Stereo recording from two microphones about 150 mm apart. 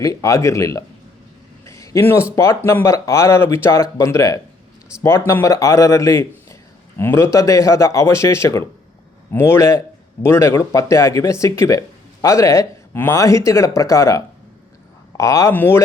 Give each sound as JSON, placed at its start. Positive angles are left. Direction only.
{"t": 0.0, "sound": "speech", "side_deg": 20}
{"t": 1.6, "sound": "a sound", "side_deg": 20}
{"t": 2.3, "sound": "speech", "side_deg": 20}